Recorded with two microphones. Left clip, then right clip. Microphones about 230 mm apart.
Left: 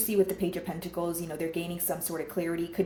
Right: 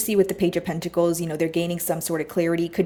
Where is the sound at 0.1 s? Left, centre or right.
Right.